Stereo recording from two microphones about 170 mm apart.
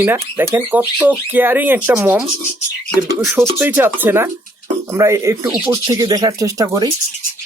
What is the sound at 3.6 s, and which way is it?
Speech, 10° right (ahead or behind).